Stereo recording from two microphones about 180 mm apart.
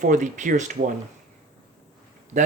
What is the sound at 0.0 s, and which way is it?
Speech, 40° right (ahead or behind).